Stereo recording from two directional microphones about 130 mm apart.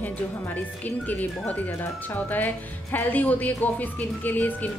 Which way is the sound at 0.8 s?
15° left (ahead or behind).